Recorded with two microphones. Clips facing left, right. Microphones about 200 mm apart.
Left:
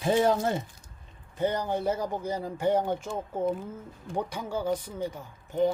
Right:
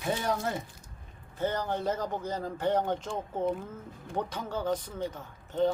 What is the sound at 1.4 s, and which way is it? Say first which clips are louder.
Speech: left 3 dB; 15° left (ahead or behind).